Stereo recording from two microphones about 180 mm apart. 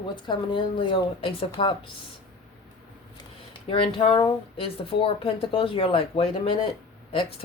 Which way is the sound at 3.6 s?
30° left (ahead or behind).